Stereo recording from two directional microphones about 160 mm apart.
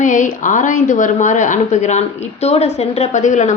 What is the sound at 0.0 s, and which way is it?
A woman's voice, 50° left (ahead or behind).